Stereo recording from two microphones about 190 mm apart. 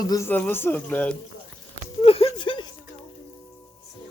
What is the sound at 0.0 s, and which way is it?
Speech, 15° left (ahead or behind).